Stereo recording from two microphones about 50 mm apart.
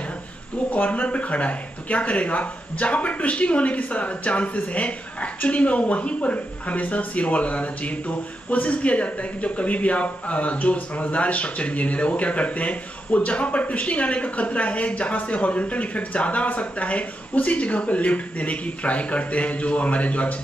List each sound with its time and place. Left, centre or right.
0.7 s speech: left